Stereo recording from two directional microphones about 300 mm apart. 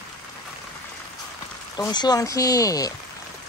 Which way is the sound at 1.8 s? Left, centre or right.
Centre.